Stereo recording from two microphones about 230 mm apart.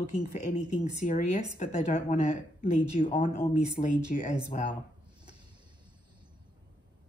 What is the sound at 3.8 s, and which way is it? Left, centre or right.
Speech, centre.